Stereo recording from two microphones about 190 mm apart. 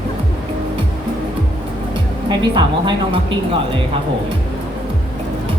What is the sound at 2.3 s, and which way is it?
Speech, 25° right (ahead or behind).